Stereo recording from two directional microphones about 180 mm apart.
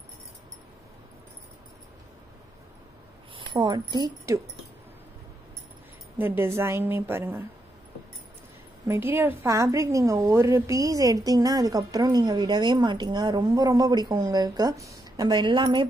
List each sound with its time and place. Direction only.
3.3 s speech: 25° right (ahead or behind)
6.1 s a woman's voice: 10° right (ahead or behind)
8.8 s a woman's voice: 15° right (ahead or behind)